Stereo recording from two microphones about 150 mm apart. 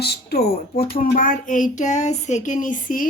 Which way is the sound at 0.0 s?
90° left.